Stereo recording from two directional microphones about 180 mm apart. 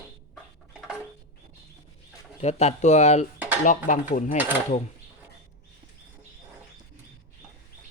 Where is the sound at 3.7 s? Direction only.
45° left (ahead or behind).